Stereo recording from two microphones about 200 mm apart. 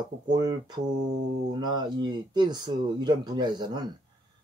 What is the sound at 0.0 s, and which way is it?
Speech, 20° right (ahead or behind).